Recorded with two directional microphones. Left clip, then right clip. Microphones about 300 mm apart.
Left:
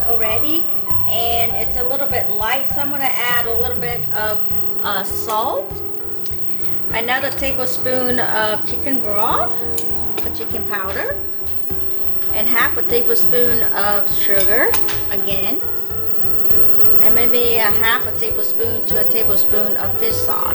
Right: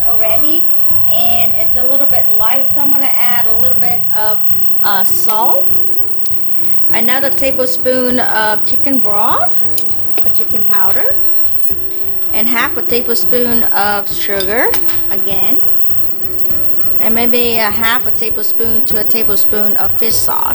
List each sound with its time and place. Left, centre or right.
1.1 s a woman's voice: right
6.9 s speech: right
10.7 s a woman's voice: right
12.3 s speech: right
17.0 s speech: right